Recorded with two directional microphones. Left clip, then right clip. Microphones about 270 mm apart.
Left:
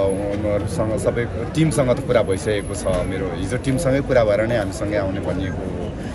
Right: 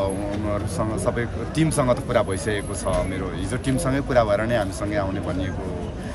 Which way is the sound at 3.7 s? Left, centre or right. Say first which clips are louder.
Left 3 dB; right.